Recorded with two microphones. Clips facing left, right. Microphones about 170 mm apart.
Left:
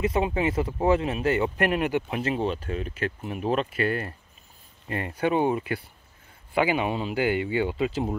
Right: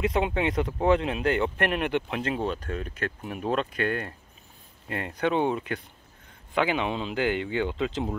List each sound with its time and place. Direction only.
0.0 s speech: centre (ahead or behind)